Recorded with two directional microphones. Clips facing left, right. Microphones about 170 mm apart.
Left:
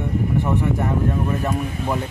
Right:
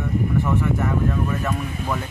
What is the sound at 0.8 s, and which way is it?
Speech, 35° left (ahead or behind).